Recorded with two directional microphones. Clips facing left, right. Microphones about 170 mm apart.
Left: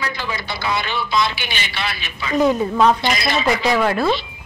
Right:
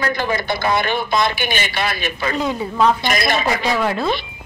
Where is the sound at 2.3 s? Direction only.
15° left (ahead or behind).